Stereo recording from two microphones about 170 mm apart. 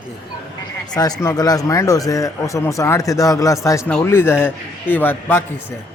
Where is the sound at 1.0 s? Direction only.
20° left (ahead or behind).